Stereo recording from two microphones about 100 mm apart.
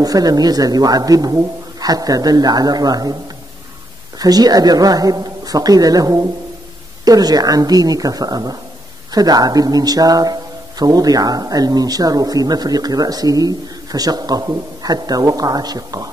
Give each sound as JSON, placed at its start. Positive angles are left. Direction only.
{"t": 0.0, "sound": "a man's voice", "side_deg": -40}
{"t": 4.2, "sound": "a man's voice", "side_deg": -40}